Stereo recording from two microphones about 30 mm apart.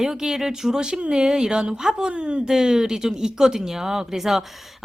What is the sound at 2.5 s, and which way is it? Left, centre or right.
Speech, centre.